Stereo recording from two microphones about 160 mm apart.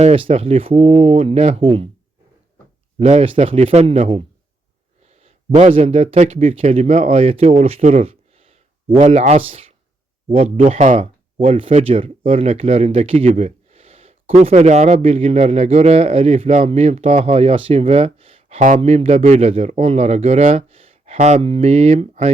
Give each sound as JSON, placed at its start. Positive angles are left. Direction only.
{"t": 0.0, "sound": "speech", "side_deg": -40}
{"t": 3.0, "sound": "speech", "side_deg": -40}
{"t": 11.3, "sound": "speech", "side_deg": -35}